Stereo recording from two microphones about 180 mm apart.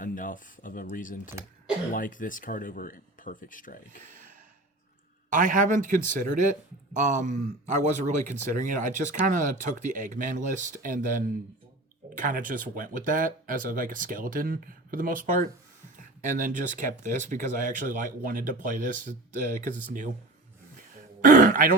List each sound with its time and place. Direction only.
0.0 s speech: 50° left (ahead or behind)
4.0 s a sound: 45° right (ahead or behind)
5.3 s speech: 45° right (ahead or behind)
21.2 s throat clearing: 45° right (ahead or behind)